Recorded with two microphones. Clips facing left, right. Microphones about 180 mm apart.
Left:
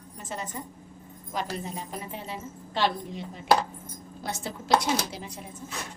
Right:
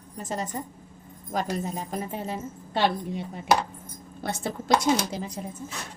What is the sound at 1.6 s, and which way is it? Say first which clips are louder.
A woman's voice: right 5 dB; 45° right (ahead or behind).